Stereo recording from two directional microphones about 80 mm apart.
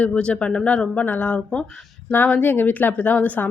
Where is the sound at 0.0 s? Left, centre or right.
Centre.